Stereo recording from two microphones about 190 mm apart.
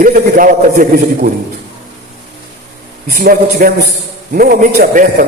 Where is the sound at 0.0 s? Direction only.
45° right (ahead or behind).